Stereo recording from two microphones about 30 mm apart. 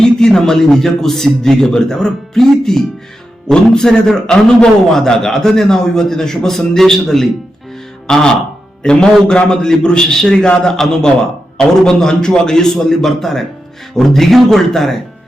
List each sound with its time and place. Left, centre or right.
0.0 s a man's voice: centre
8.0 s a man's voice: left
10.1 s a man's voice: centre
10.4 s a man's voice: left
10.7 s a man's voice: centre